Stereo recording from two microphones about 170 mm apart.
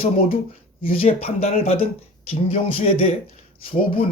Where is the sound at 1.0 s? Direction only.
35° left (ahead or behind).